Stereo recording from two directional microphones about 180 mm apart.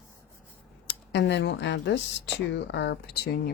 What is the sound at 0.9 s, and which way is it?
Speech, 75° left (ahead or behind).